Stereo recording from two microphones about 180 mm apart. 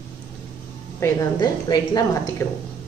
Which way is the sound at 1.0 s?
20° left (ahead or behind).